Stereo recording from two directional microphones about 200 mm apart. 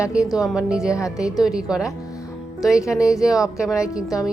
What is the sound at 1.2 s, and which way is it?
Speech, 5° right (ahead or behind).